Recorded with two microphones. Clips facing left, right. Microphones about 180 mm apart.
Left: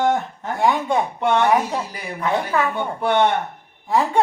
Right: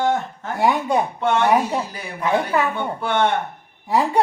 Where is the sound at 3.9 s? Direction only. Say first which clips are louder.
Even; 10° right (ahead or behind).